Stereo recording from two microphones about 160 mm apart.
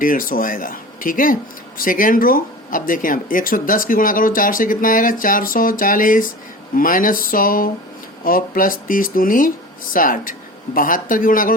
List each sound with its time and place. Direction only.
0.0 s speech: 60° left (ahead or behind)